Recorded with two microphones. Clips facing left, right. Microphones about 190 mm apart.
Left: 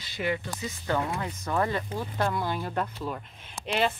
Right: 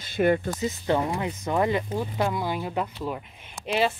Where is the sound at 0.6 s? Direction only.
20° right (ahead or behind).